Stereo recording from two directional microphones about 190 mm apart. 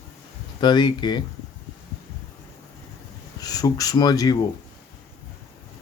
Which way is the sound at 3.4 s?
20° left (ahead or behind).